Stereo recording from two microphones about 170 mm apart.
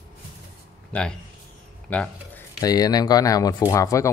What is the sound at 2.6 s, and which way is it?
Speech, 20° left (ahead or behind).